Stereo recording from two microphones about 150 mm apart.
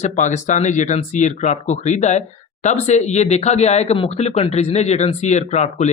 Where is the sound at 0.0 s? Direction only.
55° left (ahead or behind).